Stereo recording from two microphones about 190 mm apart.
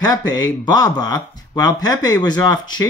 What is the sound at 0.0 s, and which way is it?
Speech, 20° left (ahead or behind).